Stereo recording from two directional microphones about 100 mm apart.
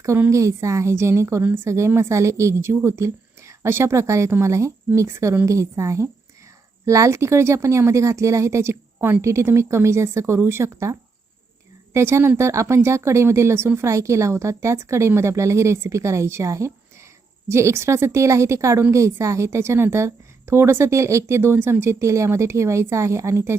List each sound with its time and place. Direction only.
0.3 s a woman's voice: 30° right (ahead or behind)
11.9 s a woman's voice: 25° right (ahead or behind)